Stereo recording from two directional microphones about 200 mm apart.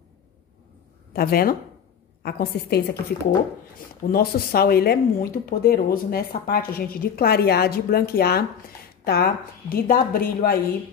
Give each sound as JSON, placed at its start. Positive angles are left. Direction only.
{"t": 1.1, "sound": "speech", "side_deg": 50}
{"t": 4.1, "sound": "speech", "side_deg": 50}